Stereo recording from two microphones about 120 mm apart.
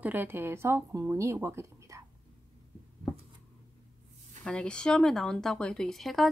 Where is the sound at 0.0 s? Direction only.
15° right (ahead or behind).